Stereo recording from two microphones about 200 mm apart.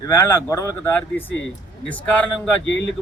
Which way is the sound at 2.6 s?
65° left (ahead or behind).